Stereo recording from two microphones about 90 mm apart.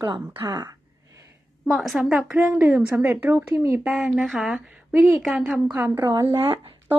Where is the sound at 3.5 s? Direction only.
35° right (ahead or behind).